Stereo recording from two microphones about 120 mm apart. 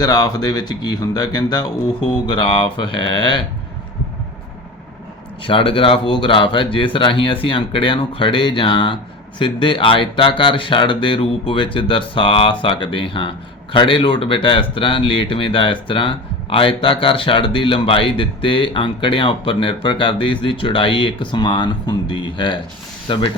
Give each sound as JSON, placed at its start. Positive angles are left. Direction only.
{"t": 0.0, "sound": "speech", "side_deg": 35}
{"t": 5.4, "sound": "speech", "side_deg": 45}